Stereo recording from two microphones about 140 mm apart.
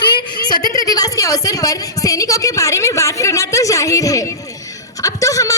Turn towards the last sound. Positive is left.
turn(degrees=25)  # may be behind; listen again after turning